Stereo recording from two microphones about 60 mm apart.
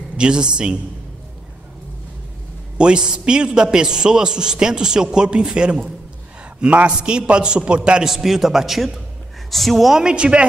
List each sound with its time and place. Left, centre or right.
0.2 s a man's voice: centre
2.8 s a man's voice: centre
10.0 s a man's voice: centre